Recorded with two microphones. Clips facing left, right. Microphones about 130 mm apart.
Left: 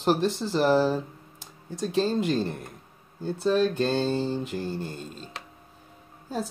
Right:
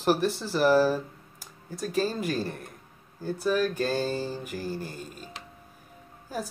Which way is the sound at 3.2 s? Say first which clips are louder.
Left 3 dB; 25° left (ahead or behind).